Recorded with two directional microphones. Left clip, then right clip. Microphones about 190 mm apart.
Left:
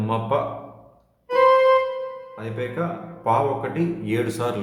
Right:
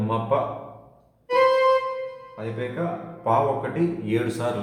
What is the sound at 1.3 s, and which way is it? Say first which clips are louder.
Music: left 3 dB; 10° right (ahead or behind).